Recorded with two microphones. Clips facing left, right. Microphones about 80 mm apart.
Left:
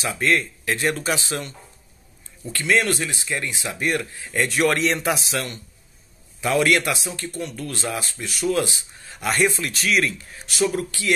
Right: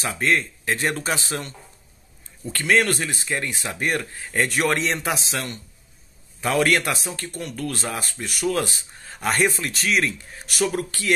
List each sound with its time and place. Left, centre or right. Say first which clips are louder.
0.0 s speech: left 1 dB; right
2.5 s speech: right 1 dB; right
4.6 s speech: left 2 dB; right
7.2 s speech: right 1 dB; right
10.4 s speech: left 1 dB; right